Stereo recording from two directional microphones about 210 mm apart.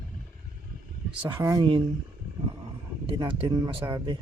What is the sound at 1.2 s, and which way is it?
Speech, 15° right (ahead or behind).